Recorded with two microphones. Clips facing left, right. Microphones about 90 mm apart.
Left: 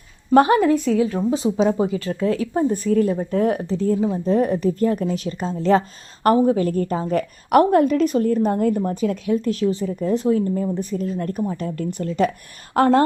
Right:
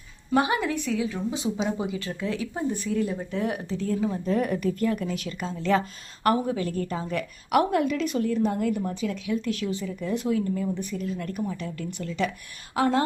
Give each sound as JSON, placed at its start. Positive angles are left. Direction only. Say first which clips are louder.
{"t": 0.3, "sound": "a woman's voice", "louder": "left 10 dB", "side_deg": 45}